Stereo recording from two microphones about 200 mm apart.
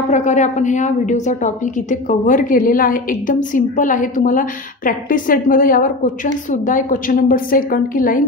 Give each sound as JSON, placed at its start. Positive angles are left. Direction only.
{"t": 0.1, "sound": "a woman's voice", "side_deg": 35}